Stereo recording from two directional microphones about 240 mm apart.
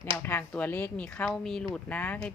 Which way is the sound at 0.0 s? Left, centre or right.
Centre.